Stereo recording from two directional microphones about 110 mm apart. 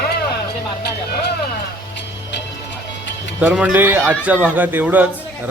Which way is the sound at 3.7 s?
15° right (ahead or behind).